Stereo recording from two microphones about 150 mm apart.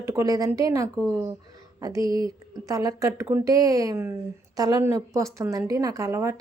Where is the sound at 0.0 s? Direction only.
20° right (ahead or behind).